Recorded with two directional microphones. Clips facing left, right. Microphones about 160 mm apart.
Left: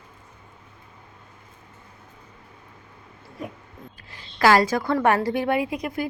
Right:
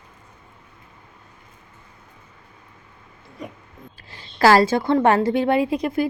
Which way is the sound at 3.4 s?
Centre (ahead or behind).